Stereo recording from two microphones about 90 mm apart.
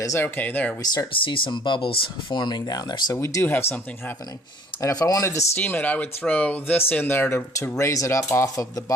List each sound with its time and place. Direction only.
0.0 s speech: 35° left (ahead or behind)
0.3 s speech: 20° left (ahead or behind)
1.1 s speech: 75° left (ahead or behind)
2.4 s speech: 50° left (ahead or behind)
3.2 s speech: 30° left (ahead or behind)
4.8 s speech: 40° left (ahead or behind)
5.5 s speech: 20° left (ahead or behind); by 8.8 s 35° left (ahead or behind)